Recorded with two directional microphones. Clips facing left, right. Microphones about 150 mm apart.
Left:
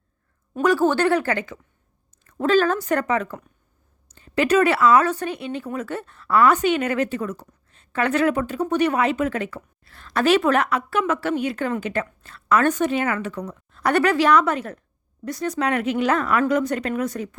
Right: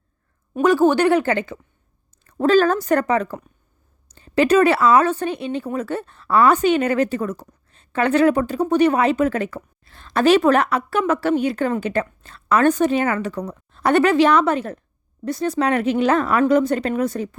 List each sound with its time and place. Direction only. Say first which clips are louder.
0.5 s speech: right 3 dB; 20° right (ahead or behind); by 9.6 s 40° right (ahead or behind)
9.8 s speech: right 4 dB; 25° right (ahead or behind)